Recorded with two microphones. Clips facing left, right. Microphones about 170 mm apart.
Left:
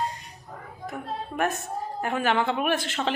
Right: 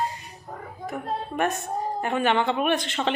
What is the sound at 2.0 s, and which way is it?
A woman's voice, centre (ahead or behind).